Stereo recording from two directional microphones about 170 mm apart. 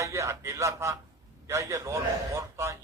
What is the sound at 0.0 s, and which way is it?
A man's voice, 15° right (ahead or behind).